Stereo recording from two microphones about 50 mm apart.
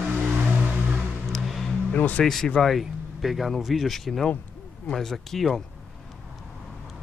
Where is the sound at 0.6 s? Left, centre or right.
Right.